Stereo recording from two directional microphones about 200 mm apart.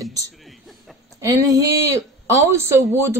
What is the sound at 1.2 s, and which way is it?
Speech, 15° right (ahead or behind).